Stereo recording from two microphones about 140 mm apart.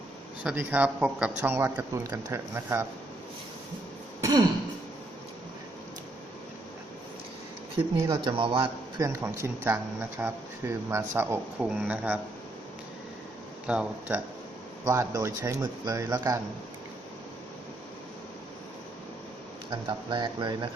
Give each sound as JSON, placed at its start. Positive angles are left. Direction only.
{"t": 0.4, "sound": "speech", "side_deg": -10}
{"t": 4.2, "sound": "throat clearing", "side_deg": -30}
{"t": 7.8, "sound": "speech", "side_deg": -35}
{"t": 9.0, "sound": "speech", "side_deg": -20}
{"t": 13.7, "sound": "speech", "side_deg": -10}
{"t": 14.8, "sound": "speech", "side_deg": -20}
{"t": 19.7, "sound": "speech", "side_deg": -30}